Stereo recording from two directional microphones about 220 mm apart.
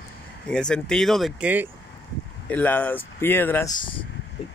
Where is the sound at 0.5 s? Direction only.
5° left (ahead or behind).